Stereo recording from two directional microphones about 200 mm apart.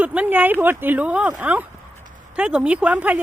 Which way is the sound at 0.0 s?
5° right (ahead or behind).